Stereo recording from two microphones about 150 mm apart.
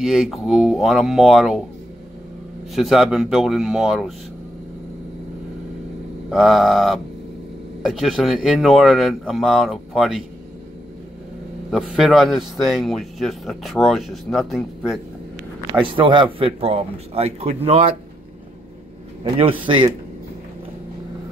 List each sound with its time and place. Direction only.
0.0 s a man's voice: centre (ahead or behind)
2.7 s a man's voice: centre (ahead or behind)
6.3 s a man's voice: centre (ahead or behind)
11.7 s a man's voice: 5° right (ahead or behind)
16.0 s speech: 35° right (ahead or behind)
19.6 s speech: 35° right (ahead or behind)